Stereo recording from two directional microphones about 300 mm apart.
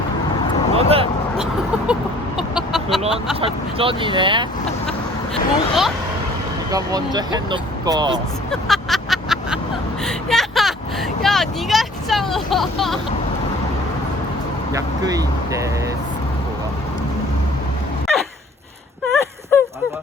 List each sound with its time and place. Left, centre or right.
0.7 s vehicle: centre
2.6 s chicken: centre
3.4 s speech: centre
4.9 s speech: centre
6.7 s speech: centre
8.6 s vehicle: centre
14.7 s speech: centre
19.1 s a sound: centre